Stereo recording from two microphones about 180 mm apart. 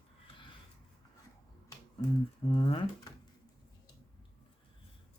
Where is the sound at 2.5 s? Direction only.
30° left (ahead or behind).